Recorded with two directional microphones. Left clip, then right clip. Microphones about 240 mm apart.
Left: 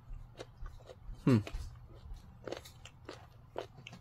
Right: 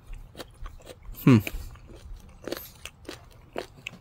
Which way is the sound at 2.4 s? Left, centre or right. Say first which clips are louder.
Right 8 dB; right.